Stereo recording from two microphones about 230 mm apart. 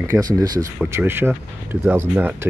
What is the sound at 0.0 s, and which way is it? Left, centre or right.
Speech, centre.